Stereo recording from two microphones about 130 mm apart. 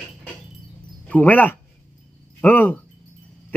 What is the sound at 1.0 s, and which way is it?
A man's voice, 10° left (ahead or behind).